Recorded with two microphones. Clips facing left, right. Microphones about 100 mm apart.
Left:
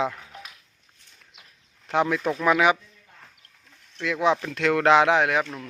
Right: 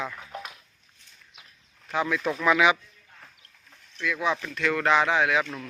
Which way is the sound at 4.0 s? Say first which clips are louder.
Left 5 dB; 65° left (ahead or behind).